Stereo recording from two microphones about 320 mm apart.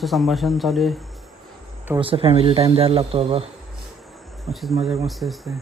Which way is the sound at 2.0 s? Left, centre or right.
Centre.